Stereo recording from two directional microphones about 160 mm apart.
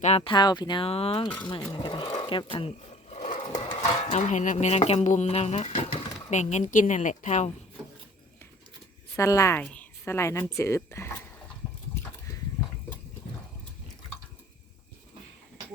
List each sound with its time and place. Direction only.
0.2 s speech: 30° left (ahead or behind)
3.3 s a sound: 30° left (ahead or behind)
3.8 s music: 45° left (ahead or behind)
9.1 s a woman's voice: 20° left (ahead or behind)